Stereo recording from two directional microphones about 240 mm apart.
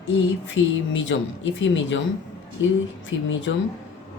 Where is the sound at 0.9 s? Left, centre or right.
Left.